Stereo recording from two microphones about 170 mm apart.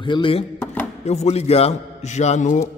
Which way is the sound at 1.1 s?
40° left (ahead or behind).